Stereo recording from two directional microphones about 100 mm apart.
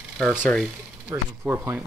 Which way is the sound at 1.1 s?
20° right (ahead or behind).